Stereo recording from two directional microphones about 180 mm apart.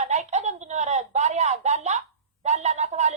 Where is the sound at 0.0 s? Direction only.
40° right (ahead or behind).